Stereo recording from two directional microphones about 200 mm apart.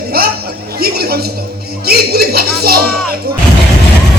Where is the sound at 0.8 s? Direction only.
50° right (ahead or behind).